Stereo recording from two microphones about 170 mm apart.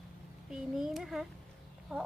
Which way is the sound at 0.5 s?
Centre (ahead or behind).